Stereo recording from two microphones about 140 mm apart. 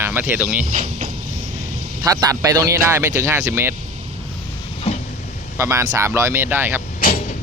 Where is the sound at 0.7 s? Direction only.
55° right (ahead or behind).